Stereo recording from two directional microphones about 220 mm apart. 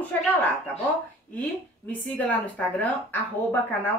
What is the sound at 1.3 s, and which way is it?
Speech, 5° left (ahead or behind).